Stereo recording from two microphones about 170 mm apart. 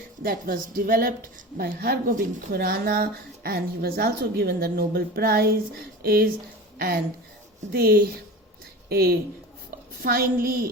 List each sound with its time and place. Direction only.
0.2 s a woman's voice: 55° right (ahead or behind)